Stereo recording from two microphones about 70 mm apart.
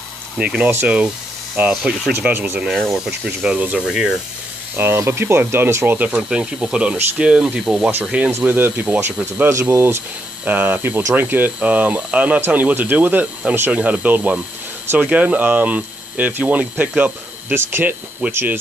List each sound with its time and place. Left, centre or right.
0.8 s speech: centre
1.7 s speech: centre
2.1 s speech: right
2.6 s speech: centre
3.8 s speech: centre
4.7 s speech: right
5.9 s speech: right
9.5 s speech: right
12.4 s speech: right
17.6 s speech: right